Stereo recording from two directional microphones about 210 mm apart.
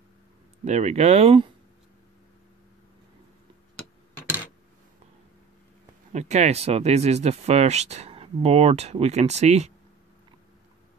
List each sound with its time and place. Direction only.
0.7 s speech: 30° right (ahead or behind)
6.1 s speech: 35° right (ahead or behind)